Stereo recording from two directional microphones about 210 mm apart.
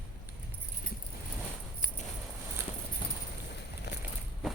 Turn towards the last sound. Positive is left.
turn(degrees=50)  # may be behind; listen again after turning